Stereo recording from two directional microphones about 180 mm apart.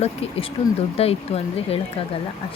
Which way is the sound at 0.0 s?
35° left (ahead or behind).